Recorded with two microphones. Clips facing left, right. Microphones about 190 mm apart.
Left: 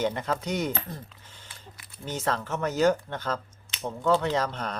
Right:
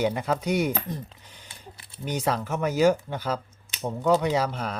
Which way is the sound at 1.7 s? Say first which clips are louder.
Right 5 dB; 30° right (ahead or behind).